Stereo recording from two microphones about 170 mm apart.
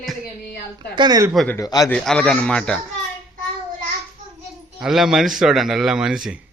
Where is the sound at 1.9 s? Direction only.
5° left (ahead or behind).